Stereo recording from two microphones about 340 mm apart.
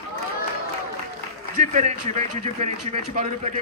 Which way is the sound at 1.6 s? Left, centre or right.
Right.